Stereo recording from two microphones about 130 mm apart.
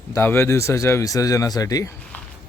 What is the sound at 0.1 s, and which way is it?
Speech, 15° left (ahead or behind).